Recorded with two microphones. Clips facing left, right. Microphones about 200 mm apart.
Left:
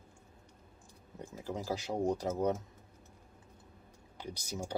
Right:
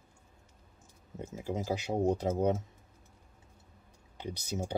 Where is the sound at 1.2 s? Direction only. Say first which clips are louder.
Right 4 dB; 20° right (ahead or behind).